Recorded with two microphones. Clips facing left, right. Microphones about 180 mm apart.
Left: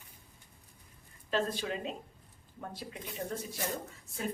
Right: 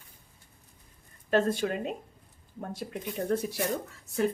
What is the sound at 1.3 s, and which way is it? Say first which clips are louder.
Speech: right 7 dB; 55° right (ahead or behind).